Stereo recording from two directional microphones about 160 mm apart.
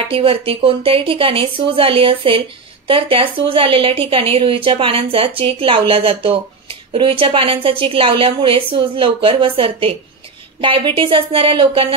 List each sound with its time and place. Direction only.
0.1 s a woman's voice: 35° right (ahead or behind)